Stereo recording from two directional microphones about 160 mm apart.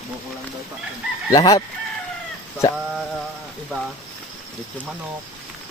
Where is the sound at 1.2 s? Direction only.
20° left (ahead or behind).